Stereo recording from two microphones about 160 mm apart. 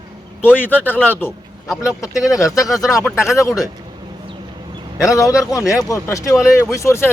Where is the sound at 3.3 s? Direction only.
20° left (ahead or behind).